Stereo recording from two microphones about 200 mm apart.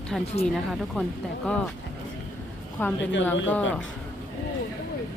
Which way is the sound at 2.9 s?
65° left (ahead or behind).